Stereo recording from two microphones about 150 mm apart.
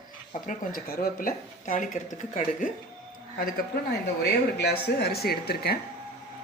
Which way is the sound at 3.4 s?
85° left.